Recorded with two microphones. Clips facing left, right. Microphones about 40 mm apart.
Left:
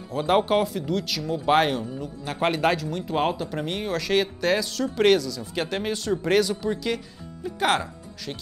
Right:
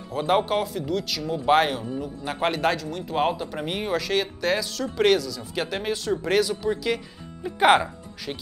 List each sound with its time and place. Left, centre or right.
0.1 s speech: centre
7.4 s speech: centre